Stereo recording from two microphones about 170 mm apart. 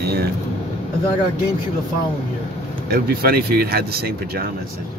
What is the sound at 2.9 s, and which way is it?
Speech, 65° right (ahead or behind).